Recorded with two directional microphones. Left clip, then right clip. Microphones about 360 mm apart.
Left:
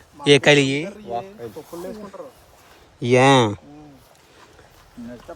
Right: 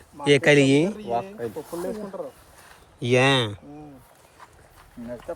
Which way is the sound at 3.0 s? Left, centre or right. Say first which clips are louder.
Left 5 dB; centre.